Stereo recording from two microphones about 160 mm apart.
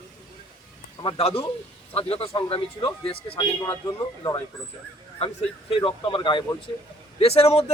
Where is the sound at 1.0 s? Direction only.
35° left (ahead or behind).